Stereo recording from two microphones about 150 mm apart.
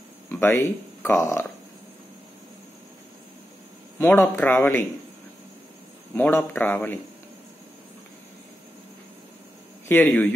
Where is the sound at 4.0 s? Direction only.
15° left (ahead or behind).